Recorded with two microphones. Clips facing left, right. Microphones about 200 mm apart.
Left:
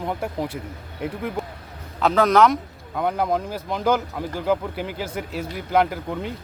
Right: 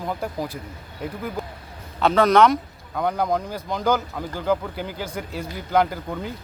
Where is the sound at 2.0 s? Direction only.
Centre (ahead or behind).